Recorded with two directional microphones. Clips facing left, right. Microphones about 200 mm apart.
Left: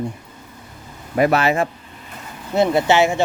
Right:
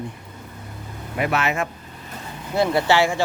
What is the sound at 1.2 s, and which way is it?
Speech, 35° left (ahead or behind).